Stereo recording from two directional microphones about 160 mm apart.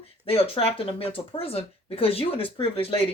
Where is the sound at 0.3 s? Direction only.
35° left (ahead or behind).